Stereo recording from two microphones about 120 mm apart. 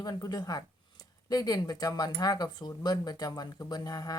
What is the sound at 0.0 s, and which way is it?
Speech, 35° left (ahead or behind).